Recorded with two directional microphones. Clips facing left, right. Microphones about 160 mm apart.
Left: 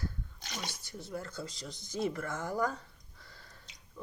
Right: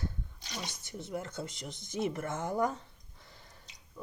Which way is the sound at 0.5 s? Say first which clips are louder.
Right 1 dB; 20° right (ahead or behind).